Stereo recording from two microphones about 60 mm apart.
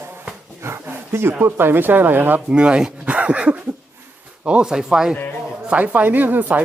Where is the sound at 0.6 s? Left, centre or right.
Right.